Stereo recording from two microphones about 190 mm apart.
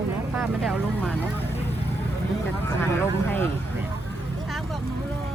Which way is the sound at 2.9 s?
10° left (ahead or behind).